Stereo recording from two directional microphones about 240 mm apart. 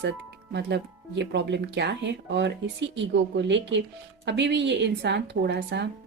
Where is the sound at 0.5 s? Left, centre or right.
Right.